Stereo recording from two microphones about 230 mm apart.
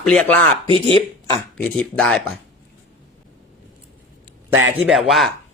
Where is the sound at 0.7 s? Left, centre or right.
Left.